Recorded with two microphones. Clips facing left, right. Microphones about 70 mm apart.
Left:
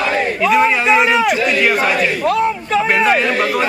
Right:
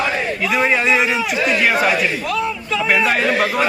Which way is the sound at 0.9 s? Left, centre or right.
Left.